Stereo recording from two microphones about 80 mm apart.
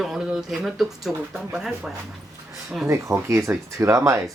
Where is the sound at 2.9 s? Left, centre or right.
Right.